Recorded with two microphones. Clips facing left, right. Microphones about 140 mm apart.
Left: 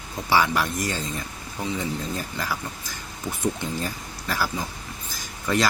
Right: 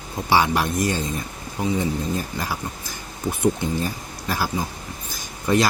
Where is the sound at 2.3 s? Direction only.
20° right (ahead or behind).